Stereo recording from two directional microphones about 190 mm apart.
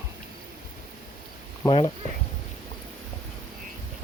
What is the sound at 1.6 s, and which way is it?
Speech, 25° left (ahead or behind).